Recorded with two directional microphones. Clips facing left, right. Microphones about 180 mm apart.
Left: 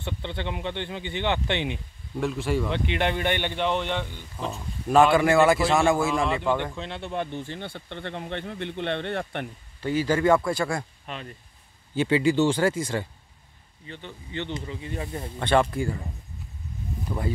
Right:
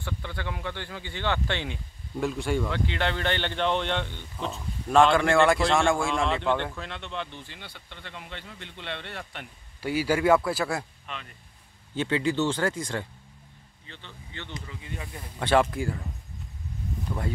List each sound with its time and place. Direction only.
0.0 s speech: 25° left (ahead or behind)
2.1 s speech: centre (ahead or behind)
2.7 s speech: 20° left (ahead or behind)
6.8 s speech: 30° left (ahead or behind)
7.1 s speech: 50° left (ahead or behind)
9.8 s a man's voice: 10° right (ahead or behind)
11.1 s speech: 40° left (ahead or behind)
11.9 s speech: 10° left (ahead or behind); by 15.0 s 30° left (ahead or behind)
15.3 s speech: 5° right (ahead or behind)
17.1 s speech: 5° left (ahead or behind)